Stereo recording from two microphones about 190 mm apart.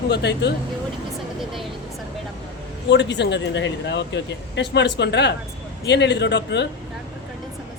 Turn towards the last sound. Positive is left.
turn(degrees=65)  # may be behind; listen again after turning